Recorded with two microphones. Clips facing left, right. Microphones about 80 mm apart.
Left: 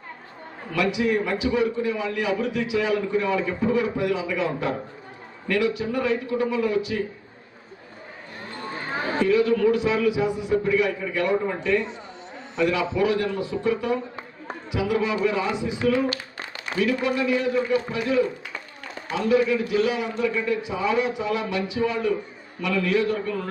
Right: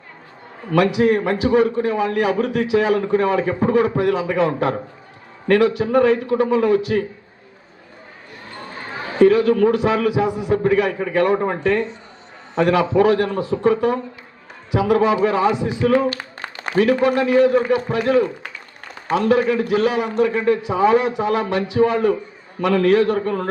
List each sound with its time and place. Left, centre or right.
0.7 s a man's voice: right
9.1 s a man's voice: right